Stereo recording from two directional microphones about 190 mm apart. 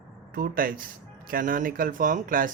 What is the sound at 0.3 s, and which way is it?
Speech, 50° right (ahead or behind).